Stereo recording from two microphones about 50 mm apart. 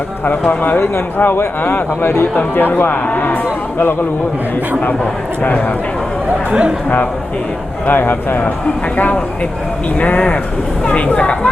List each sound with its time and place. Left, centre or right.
0.3 s speech: left
0.8 s speech: left
2.6 s speech: left
5.4 s speech: left
6.5 s speech: right
7.9 s speech: left
10.0 s speech: left